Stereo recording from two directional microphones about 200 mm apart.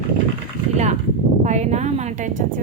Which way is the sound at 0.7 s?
35° right (ahead or behind).